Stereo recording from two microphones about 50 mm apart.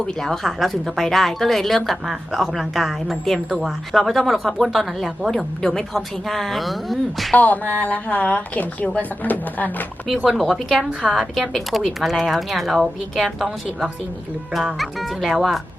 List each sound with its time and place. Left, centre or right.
0.0 s speech: centre
7.3 s speech: left
10.2 s speech: centre